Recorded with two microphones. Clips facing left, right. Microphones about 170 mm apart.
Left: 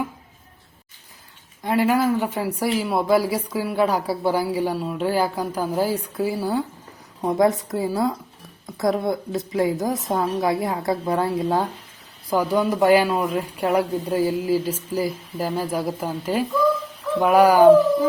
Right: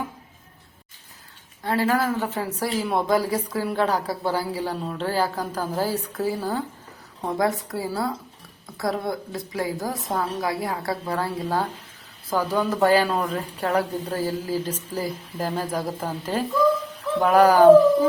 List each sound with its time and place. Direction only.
1.6 s a woman's voice: 15° left (ahead or behind)